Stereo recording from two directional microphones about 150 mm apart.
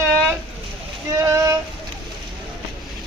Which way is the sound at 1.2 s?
20° right (ahead or behind).